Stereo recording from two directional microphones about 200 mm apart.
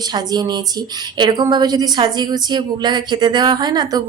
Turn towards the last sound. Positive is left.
turn(degrees=-20)  # may be behind; listen again after turning